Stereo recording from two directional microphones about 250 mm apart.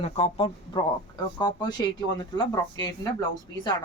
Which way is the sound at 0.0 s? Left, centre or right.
Left.